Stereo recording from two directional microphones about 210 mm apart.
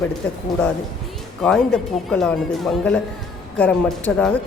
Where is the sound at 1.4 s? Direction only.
Centre (ahead or behind).